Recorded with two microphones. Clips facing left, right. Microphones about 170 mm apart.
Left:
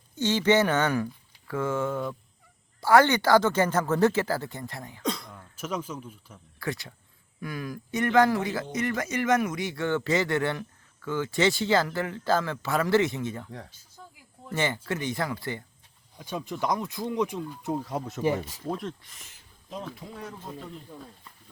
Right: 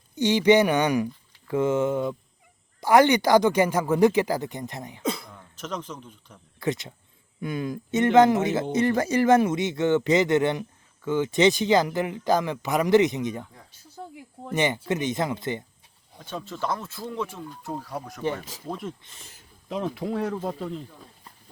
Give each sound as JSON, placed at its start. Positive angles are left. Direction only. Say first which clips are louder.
{"t": 0.2, "sound": "speech", "louder": "right 4 dB", "side_deg": -15}
{"t": 5.0, "sound": "throat clearing", "louder": "right 2 dB", "side_deg": -5}
{"t": 5.5, "sound": "speech", "louder": "left 1 dB", "side_deg": 10}
{"t": 6.6, "sound": "speech", "louder": "right 5 dB", "side_deg": -20}
{"t": 14.0, "sound": "a sound", "louder": "right 9 dB", "side_deg": -60}
{"t": 14.5, "sound": "speech", "louder": "right 4 dB", "side_deg": -20}
{"t": 16.1, "sound": "speech", "louder": "left 1 dB", "side_deg": 10}
{"t": 18.2, "sound": "speech", "louder": "left 2 dB", "side_deg": 10}
{"t": 19.0, "sound": "speech", "louder": "right 3 dB", "side_deg": -30}
{"t": 19.6, "sound": "speech", "louder": "right 9 dB", "side_deg": -75}